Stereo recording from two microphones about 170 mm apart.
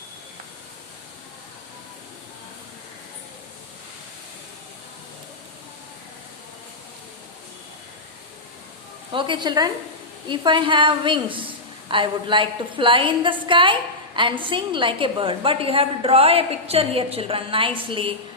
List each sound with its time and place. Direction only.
9.1 s a woman's voice: 30° right (ahead or behind)